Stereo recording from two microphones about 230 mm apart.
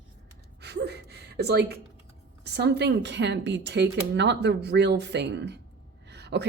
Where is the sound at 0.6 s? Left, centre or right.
Right.